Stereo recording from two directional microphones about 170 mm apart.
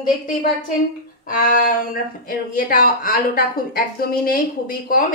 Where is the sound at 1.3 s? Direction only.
55° left (ahead or behind).